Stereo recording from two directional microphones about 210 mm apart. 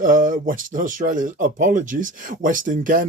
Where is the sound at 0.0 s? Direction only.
40° right (ahead or behind).